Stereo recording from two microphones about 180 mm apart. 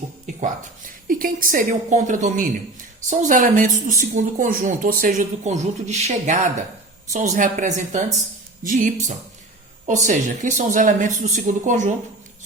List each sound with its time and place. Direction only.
0.3 s speech: 45° right (ahead or behind)